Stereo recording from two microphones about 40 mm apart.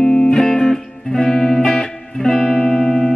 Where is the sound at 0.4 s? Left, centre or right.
Centre.